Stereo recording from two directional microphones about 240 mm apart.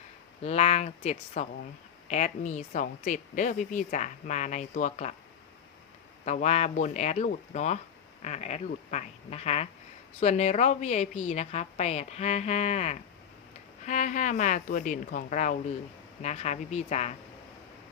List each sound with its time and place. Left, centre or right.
0.4 s a woman's voice: left
6.2 s a woman's voice: left